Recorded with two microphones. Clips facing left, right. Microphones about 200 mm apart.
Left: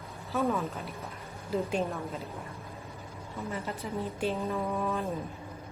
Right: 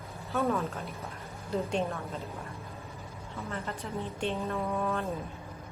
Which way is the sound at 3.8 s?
5° left (ahead or behind).